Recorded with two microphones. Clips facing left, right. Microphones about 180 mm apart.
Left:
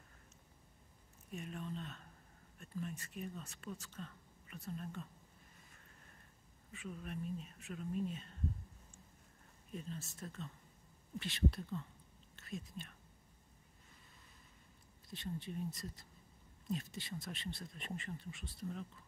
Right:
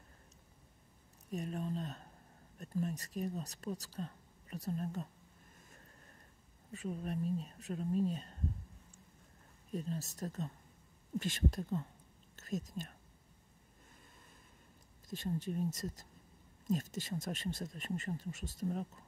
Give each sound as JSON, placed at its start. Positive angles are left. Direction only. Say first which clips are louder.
{"t": 1.3, "sound": "speech", "louder": "right 6 dB", "side_deg": -40}
{"t": 6.7, "sound": "speech", "louder": "right 7 dB", "side_deg": -40}
{"t": 9.7, "sound": "speech", "louder": "right 7 dB", "side_deg": -40}
{"t": 15.0, "sound": "speech", "louder": "right 6 dB", "side_deg": -45}